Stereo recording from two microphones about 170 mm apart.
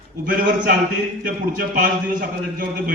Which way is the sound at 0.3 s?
50° right (ahead or behind).